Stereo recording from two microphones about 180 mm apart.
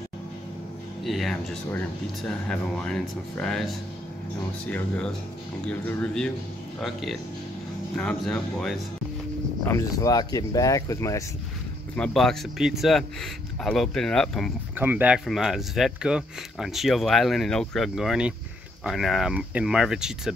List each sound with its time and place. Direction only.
1.0 s speech: centre (ahead or behind)
9.7 s speech: 20° left (ahead or behind)
11.9 s speech: 5° left (ahead or behind)
14.8 s speech: 10° right (ahead or behind)